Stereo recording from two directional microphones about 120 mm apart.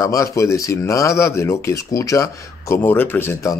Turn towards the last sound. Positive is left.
turn(degrees=25)  # may be behind; listen again after turning